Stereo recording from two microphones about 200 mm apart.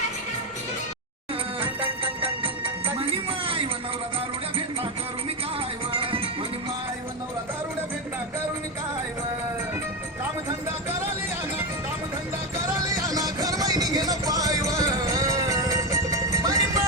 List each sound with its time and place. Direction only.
1.8 s music: 25° right (ahead or behind)
5.9 s music: 25° right (ahead or behind)
12.9 s music: 15° right (ahead or behind)